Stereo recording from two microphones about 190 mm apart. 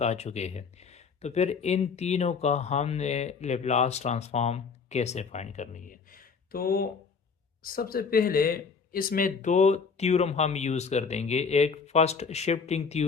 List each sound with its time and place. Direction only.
0.0 s speech: 35° left (ahead or behind)